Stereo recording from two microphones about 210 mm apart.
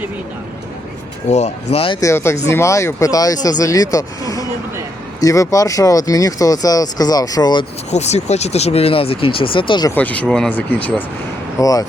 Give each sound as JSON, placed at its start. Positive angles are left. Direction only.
{"t": 1.3, "sound": "speech", "side_deg": 30}
{"t": 2.0, "sound": "speech", "side_deg": 15}
{"t": 7.9, "sound": "speech", "side_deg": 30}
{"t": 9.9, "sound": "speech", "side_deg": 5}
{"t": 11.6, "sound": "speech", "side_deg": 15}